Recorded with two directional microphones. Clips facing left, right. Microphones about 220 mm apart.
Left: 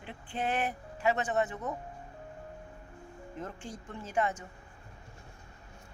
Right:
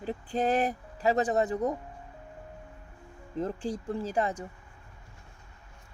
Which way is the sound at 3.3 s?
35° right (ahead or behind).